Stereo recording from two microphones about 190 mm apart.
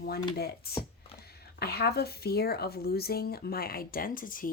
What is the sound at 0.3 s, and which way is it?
Speech, 55° left (ahead or behind).